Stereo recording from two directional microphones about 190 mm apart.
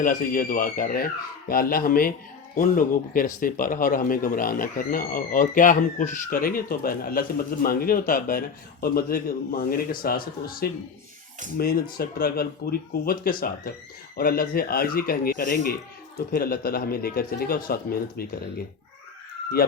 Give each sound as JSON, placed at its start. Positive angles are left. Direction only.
{"t": 0.0, "sound": "speech", "side_deg": 45}